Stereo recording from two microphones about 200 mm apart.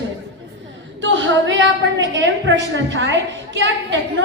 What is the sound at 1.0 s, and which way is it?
A woman's voice, 65° right (ahead or behind).